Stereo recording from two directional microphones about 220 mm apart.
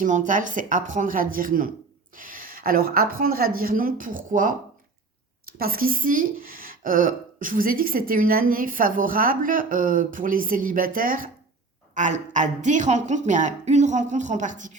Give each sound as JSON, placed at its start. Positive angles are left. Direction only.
{"t": 0.0, "sound": "speech", "side_deg": -35}
{"t": 5.5, "sound": "speech", "side_deg": -40}